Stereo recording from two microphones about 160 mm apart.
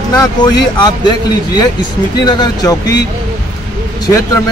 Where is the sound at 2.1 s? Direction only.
25° left (ahead or behind).